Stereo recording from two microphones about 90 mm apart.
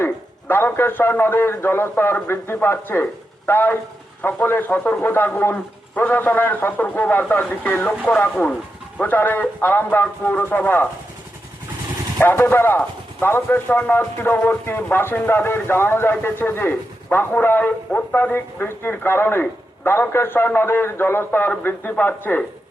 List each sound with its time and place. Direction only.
0.0 s a man's voice: 25° left (ahead or behind)
12.2 s a man's voice: 25° left (ahead or behind)